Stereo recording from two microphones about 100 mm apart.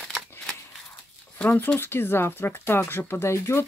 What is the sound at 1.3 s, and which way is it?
Speech, 15° left (ahead or behind).